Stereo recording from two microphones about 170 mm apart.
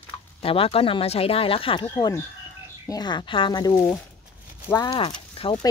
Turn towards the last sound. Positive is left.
turn(degrees=30)  # may be behind; listen again after turning